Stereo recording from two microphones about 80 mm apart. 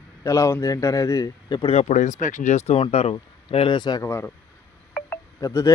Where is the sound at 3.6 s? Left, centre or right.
Left.